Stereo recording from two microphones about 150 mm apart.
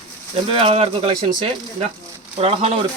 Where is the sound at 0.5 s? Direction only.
40° right (ahead or behind).